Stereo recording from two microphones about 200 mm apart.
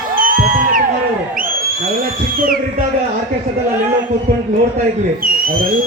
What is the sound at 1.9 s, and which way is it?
Speech, 45° right (ahead or behind).